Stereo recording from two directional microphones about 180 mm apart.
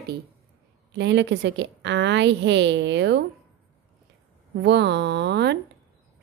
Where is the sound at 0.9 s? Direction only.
75° right (ahead or behind).